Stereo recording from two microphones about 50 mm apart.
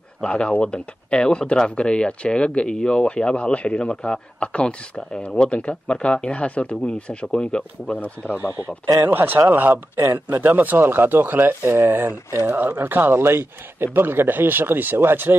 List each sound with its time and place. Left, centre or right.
0.2 s speech: left
7.9 s speech: left
9.0 s speech: right
10.8 s speech: right
12.4 s speech: right